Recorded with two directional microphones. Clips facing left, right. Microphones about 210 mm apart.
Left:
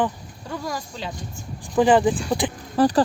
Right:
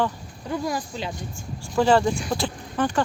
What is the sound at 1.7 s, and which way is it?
Speech, 15° left (ahead or behind).